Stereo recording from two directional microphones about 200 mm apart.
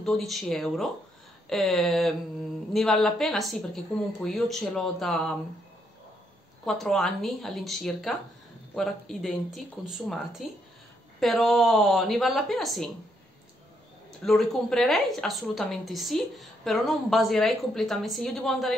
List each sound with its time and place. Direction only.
0.0 s a woman's voice: centre (ahead or behind)
6.6 s a woman's voice: centre (ahead or behind)
14.2 s a woman's voice: centre (ahead or behind)